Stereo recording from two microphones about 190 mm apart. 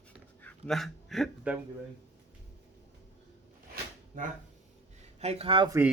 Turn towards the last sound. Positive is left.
turn(degrees=-25)  # may be behind; listen again after turning